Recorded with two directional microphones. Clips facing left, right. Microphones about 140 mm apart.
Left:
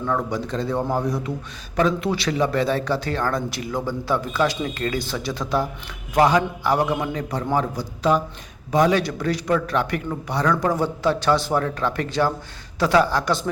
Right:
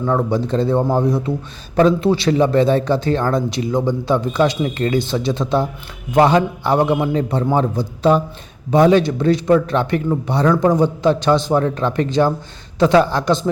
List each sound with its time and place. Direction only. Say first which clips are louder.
0.0 s a man's voice: right 6 dB; 30° right (ahead or behind)